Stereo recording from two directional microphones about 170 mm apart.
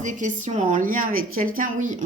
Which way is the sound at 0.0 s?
45° right (ahead or behind).